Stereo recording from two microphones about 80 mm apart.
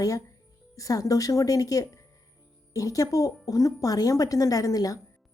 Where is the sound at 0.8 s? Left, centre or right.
Left.